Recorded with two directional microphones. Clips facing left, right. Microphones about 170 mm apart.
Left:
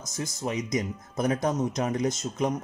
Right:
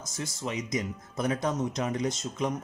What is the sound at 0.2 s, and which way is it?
Speech, 40° left (ahead or behind).